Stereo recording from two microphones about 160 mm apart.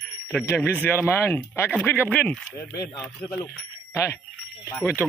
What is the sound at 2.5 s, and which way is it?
Speech, 15° left (ahead or behind).